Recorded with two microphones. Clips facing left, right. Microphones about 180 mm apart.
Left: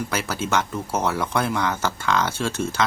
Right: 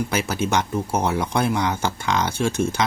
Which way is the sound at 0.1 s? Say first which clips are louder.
Right 2 dB; 15° right (ahead or behind).